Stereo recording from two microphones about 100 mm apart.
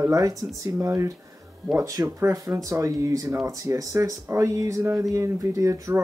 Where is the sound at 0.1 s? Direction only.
35° right (ahead or behind).